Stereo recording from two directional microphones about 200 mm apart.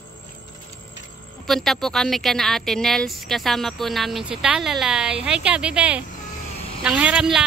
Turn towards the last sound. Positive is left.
turn(degrees=-5)  # may be behind; listen again after turning